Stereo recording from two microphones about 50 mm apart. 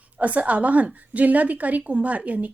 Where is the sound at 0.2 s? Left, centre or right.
Right.